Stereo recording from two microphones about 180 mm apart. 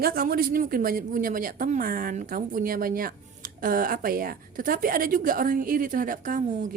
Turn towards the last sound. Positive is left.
turn(degrees=-45)  # may be behind; listen again after turning